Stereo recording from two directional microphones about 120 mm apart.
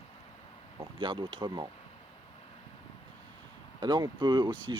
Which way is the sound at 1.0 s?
40° right (ahead or behind).